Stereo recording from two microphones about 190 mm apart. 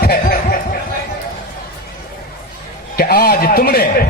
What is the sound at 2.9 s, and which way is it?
Speech, 55° left (ahead or behind).